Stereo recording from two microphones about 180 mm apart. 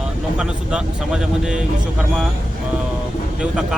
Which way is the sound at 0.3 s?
5° right (ahead or behind).